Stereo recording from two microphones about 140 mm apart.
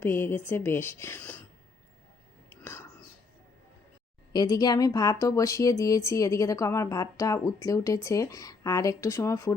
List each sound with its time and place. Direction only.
0.0 s speech: 15° left (ahead or behind)
2.5 s whispering: 20° left (ahead or behind)
4.3 s speech: 25° left (ahead or behind)